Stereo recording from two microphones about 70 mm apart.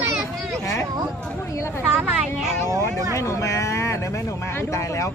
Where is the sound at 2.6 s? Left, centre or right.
Right.